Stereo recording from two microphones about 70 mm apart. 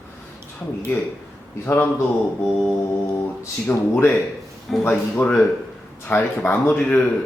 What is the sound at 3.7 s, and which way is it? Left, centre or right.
A man's voice, left.